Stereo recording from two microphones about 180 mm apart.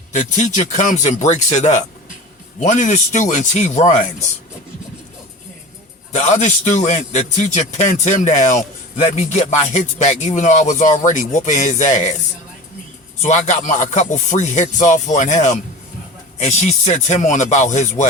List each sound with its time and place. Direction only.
0.1 s a man's voice: 40° left (ahead or behind)
6.1 s a man's voice: 40° left (ahead or behind)
13.2 s a man's voice: 40° left (ahead or behind)